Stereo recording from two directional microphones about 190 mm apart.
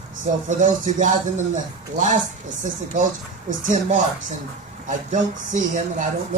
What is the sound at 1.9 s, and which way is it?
Speech, 40° right (ahead or behind).